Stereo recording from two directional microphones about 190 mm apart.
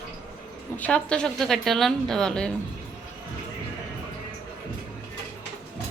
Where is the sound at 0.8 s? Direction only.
5° left (ahead or behind).